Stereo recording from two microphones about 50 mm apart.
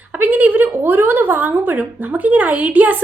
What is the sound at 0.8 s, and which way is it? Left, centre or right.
A woman's voice, right.